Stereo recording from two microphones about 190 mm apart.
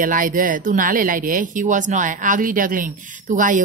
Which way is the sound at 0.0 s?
45° right (ahead or behind).